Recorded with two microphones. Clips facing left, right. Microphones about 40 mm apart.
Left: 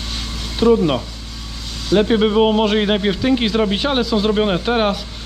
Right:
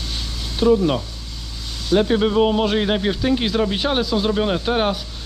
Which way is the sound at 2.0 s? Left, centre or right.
Left.